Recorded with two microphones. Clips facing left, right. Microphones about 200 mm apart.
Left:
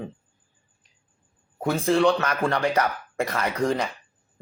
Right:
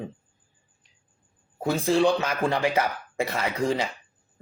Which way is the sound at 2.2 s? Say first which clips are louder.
Left 1 dB; 5° right (ahead or behind).